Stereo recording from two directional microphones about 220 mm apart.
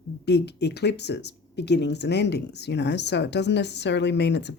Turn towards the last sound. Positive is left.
turn(degrees=50)  # may be behind; listen again after turning